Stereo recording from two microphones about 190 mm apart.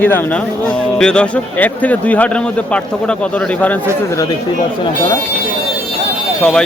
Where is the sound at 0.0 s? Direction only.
10° left (ahead or behind).